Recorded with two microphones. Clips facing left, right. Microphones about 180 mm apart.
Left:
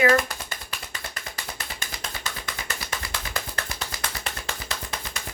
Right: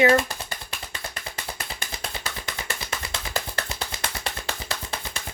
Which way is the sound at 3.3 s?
25° right (ahead or behind).